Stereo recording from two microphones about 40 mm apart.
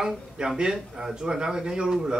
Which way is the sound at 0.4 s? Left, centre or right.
Centre.